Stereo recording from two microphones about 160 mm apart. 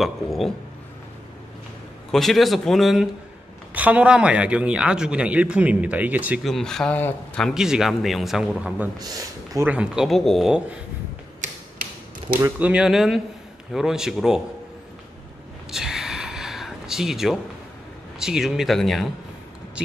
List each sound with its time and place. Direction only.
0.0 s speech: centre (ahead or behind)
2.0 s speech: centre (ahead or behind)
6.4 s speech: centre (ahead or behind)
8.9 s speech: 25° right (ahead or behind)
9.7 s speech: 5° right (ahead or behind)
11.4 s mechanisms: 60° right (ahead or behind)
12.4 s speech: 15° right (ahead or behind)
15.7 s gasp: 5° right (ahead or behind)
18.2 s speech: 5° right (ahead or behind)